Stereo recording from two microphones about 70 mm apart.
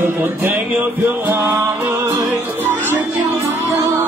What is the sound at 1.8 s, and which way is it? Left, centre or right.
Music, right.